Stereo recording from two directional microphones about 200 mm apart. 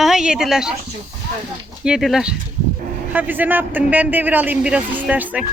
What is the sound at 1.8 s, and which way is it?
A man's voice, centre (ahead or behind).